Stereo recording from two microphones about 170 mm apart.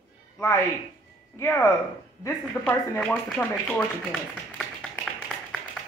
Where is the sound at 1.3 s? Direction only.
15° left (ahead or behind).